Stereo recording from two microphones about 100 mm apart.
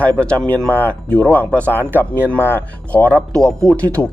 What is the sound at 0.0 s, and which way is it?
Speech, 10° left (ahead or behind).